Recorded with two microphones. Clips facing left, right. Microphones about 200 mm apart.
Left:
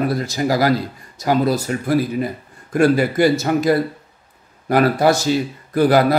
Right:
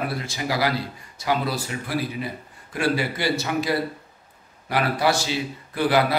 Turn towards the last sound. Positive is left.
turn(degrees=45)  # may be behind; listen again after turning